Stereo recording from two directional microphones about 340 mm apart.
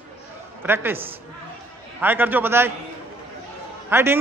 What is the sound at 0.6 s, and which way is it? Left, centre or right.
Speech, centre.